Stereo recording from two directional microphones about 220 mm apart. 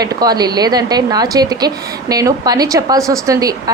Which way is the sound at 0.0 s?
15° right (ahead or behind).